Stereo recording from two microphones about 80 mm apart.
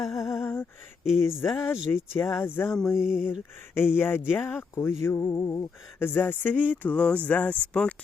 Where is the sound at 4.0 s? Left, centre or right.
Left.